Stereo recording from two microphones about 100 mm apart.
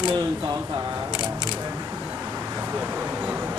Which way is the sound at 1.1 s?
45° left (ahead or behind).